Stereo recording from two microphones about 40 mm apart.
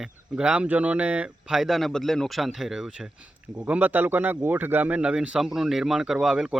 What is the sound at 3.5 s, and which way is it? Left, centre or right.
Speech, right.